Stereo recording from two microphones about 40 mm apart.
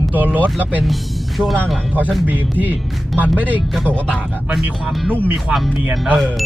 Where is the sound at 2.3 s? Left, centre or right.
Right.